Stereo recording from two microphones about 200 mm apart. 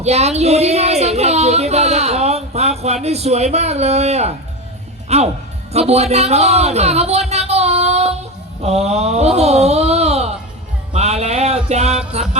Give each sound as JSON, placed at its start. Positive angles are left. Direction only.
{"t": 0.0, "sound": "speech", "side_deg": -35}
{"t": 5.9, "sound": "music", "side_deg": -30}
{"t": 8.6, "sound": "speech", "side_deg": -30}